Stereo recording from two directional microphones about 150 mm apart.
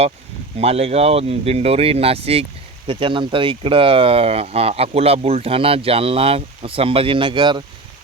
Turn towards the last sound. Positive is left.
turn(degrees=-30)  # may be behind; listen again after turning